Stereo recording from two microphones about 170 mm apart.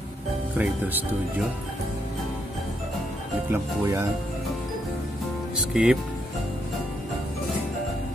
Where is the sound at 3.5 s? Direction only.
15° right (ahead or behind).